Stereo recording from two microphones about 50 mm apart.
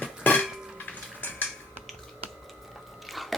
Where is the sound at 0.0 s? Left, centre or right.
Left.